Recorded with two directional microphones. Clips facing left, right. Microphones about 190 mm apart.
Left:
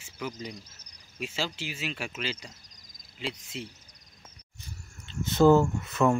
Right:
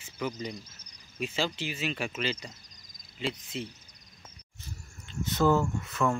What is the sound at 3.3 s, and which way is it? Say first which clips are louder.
Speech: right 2 dB; 50° right (ahead or behind).